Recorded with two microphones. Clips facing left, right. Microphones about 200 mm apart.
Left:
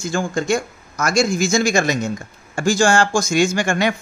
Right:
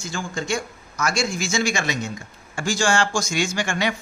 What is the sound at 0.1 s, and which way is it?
Speech, 45° left (ahead or behind).